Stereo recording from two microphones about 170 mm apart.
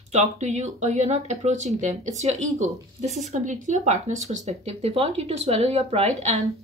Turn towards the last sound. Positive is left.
turn(degrees=-40)  # may be behind; listen again after turning